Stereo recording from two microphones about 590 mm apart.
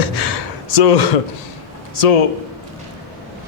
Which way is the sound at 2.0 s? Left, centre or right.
Left.